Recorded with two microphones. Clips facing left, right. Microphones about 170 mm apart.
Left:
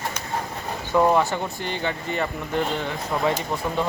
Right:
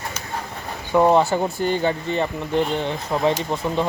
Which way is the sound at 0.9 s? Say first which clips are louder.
Right 3 dB; 25° right (ahead or behind).